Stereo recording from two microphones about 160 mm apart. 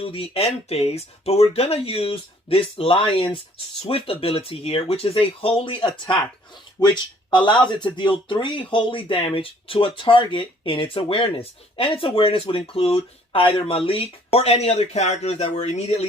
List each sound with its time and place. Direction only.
0.0 s speech: 35° left (ahead or behind)